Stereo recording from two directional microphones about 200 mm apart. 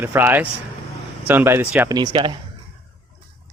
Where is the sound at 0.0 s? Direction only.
10° right (ahead or behind).